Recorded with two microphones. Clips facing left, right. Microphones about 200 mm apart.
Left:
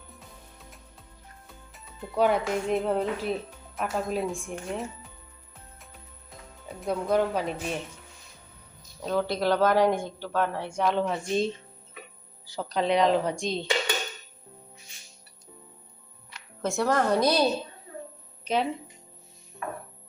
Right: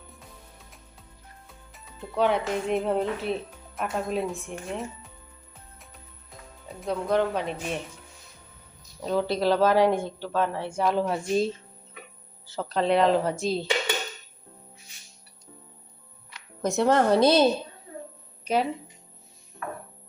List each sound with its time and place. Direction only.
1.5 s speech: centre (ahead or behind)
6.7 s speech: centre (ahead or behind)
9.3 s speech: 5° right (ahead or behind)
12.5 s speech: centre (ahead or behind)
16.6 s a woman's voice: 20° right (ahead or behind)
18.4 s speech: 10° right (ahead or behind)